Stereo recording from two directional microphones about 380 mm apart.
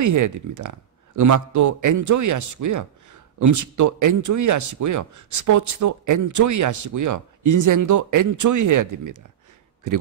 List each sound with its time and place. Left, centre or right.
0.0 s a man's voice: right